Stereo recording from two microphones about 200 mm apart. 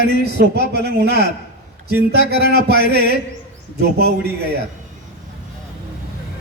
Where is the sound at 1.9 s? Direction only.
55° right (ahead or behind).